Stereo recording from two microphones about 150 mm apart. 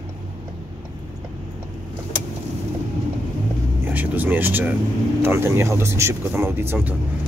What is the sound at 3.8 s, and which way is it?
Vehicle, 10° right (ahead or behind).